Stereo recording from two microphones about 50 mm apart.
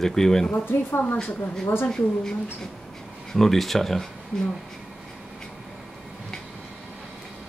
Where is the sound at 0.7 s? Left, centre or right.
Left.